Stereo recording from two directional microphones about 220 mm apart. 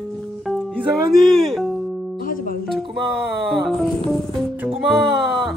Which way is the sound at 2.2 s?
40° left (ahead or behind).